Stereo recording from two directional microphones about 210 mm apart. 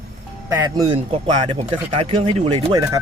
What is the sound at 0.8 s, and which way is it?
Speech, 30° right (ahead or behind).